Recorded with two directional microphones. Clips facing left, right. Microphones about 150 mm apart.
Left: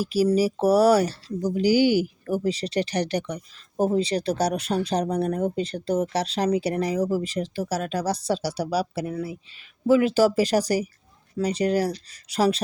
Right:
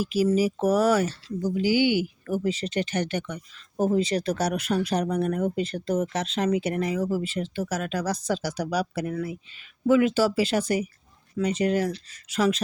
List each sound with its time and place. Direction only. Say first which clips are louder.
0.0 s speech: left 2 dB; 35° left (ahead or behind)